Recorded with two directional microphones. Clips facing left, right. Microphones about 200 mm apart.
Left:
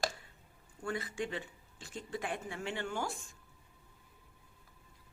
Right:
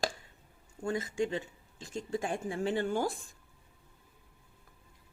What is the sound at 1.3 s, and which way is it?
Speech, 40° right (ahead or behind).